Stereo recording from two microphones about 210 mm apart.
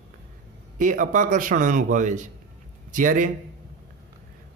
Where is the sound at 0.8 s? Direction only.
40° right (ahead or behind).